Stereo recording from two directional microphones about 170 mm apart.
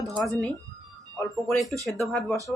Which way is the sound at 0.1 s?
Centre (ahead or behind).